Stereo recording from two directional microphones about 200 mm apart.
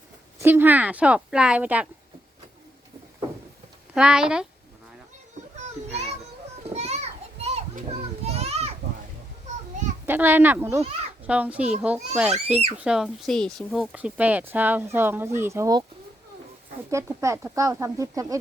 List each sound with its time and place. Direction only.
0.3 s speech: 10° right (ahead or behind)
3.9 s speech: 5° right (ahead or behind)
5.5 s children playing: 35° right (ahead or behind)
10.1 s speech: 10° right (ahead or behind)
16.9 s speech: 15° right (ahead or behind)